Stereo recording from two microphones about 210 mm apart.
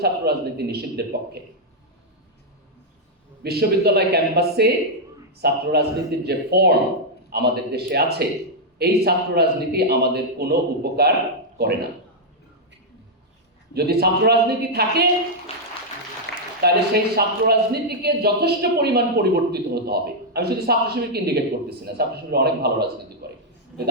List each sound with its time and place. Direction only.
0.0 s speech: 50° right (ahead or behind)
3.4 s speech: 50° right (ahead or behind)
13.7 s speech: 50° right (ahead or behind)
15.5 s music: 25° left (ahead or behind)
16.3 s a sound: 55° left (ahead or behind)
16.6 s speech: 50° right (ahead or behind)
23.2 s a sound: 50° right (ahead or behind)